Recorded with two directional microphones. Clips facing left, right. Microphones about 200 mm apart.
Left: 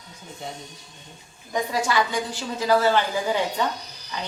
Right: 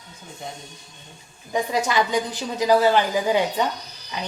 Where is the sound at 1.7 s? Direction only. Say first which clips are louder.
Right 2 dB; 20° right (ahead or behind).